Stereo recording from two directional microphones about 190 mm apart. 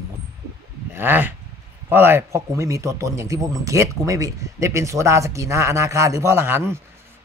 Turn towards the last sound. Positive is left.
turn(degrees=-15)  # may be behind; listen again after turning